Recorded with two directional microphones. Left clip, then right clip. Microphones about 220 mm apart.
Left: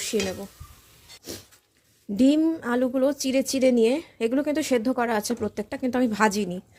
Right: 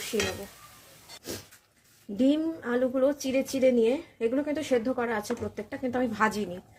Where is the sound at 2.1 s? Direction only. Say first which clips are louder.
Left 5 dB; 40° left (ahead or behind).